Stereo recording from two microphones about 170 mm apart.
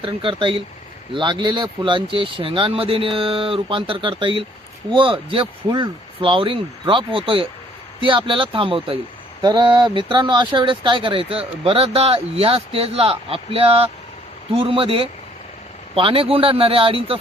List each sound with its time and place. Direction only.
0.0 s speech: 30° right (ahead or behind)